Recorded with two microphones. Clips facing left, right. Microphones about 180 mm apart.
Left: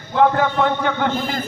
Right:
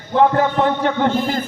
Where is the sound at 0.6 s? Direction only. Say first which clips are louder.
Right 2 dB; 35° right (ahead or behind).